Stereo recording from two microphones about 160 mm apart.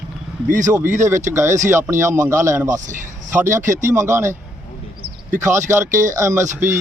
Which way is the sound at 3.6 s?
50° right (ahead or behind).